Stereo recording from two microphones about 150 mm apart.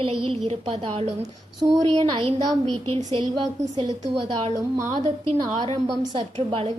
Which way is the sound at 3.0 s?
25° right (ahead or behind).